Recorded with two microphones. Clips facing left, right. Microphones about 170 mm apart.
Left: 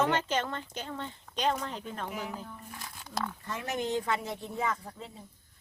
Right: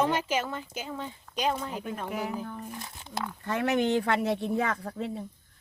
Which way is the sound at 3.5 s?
65° right (ahead or behind).